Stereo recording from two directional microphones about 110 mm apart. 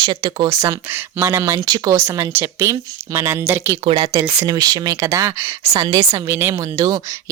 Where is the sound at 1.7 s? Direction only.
40° right (ahead or behind).